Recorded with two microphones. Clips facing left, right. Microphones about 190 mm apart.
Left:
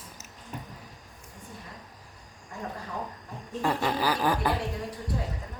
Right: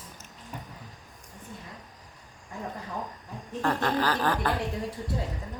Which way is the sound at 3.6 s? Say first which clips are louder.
Even; 10° left (ahead or behind).